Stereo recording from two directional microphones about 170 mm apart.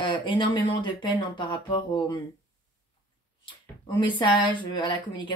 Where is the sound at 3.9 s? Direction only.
25° left (ahead or behind).